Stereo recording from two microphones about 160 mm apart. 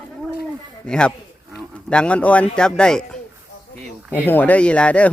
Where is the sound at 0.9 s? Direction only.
5° left (ahead or behind).